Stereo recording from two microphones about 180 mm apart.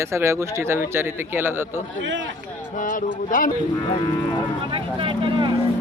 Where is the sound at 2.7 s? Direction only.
45° left (ahead or behind).